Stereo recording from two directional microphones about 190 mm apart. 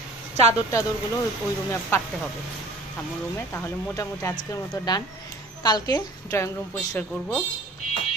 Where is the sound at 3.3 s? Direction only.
10° left (ahead or behind).